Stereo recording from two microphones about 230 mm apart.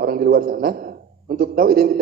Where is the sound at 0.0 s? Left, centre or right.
Right.